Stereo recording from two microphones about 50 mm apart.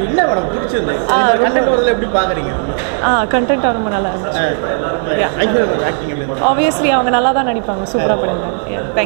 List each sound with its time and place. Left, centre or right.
0.1 s speech: centre